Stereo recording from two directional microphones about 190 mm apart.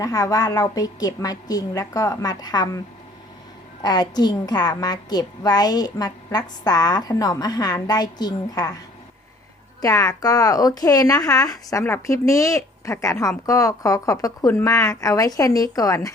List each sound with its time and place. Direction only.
0.0 s a woman's voice: 20° left (ahead or behind)
3.8 s a woman's voice: 20° left (ahead or behind)
9.8 s speech: 20° left (ahead or behind)